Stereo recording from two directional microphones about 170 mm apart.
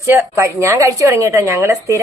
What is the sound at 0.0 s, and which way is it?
A woman's voice, 15° right (ahead or behind).